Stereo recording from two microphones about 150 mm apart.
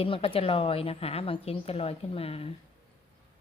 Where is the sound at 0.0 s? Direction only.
40° left (ahead or behind).